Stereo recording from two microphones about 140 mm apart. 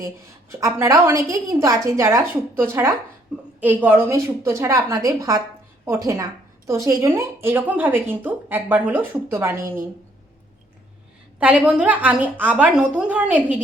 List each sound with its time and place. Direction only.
0.5 s a woman's voice: 20° right (ahead or behind)
11.3 s speech: 10° right (ahead or behind)